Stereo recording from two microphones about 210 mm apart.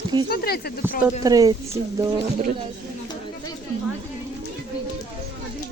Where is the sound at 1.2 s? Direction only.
15° right (ahead or behind).